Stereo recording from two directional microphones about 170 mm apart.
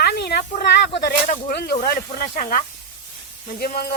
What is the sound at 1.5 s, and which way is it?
Speech, 70° left (ahead or behind).